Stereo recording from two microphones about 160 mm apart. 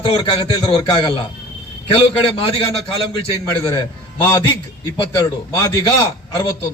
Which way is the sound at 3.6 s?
20° left (ahead or behind).